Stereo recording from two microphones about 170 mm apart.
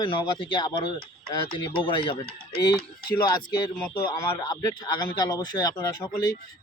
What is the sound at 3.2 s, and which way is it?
Speech, 25° left (ahead or behind).